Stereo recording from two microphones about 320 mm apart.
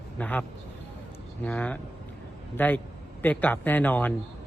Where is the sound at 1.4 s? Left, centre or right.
Centre.